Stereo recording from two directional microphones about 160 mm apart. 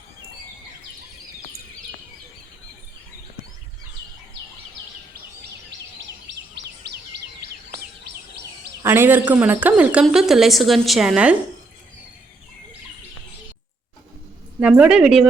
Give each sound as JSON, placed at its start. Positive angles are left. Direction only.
{"t": 6.6, "sound": "bird vocalization", "side_deg": -90}
{"t": 8.8, "sound": "a man's voice", "side_deg": -15}
{"t": 14.6, "sound": "a woman's voice", "side_deg": -5}